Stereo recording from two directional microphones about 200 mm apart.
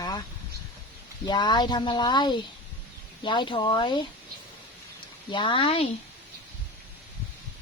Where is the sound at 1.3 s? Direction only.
20° left (ahead or behind).